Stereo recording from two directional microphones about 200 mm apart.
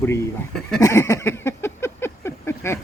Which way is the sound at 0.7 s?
15° left (ahead or behind).